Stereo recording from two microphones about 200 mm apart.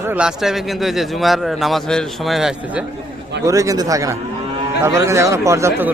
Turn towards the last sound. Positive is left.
turn(degrees=-15)  # may be behind; listen again after turning